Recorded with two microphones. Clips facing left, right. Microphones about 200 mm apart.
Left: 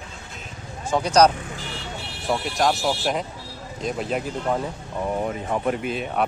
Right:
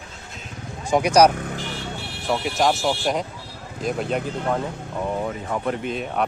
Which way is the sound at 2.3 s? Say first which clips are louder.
Right 1 dB; centre (ahead or behind).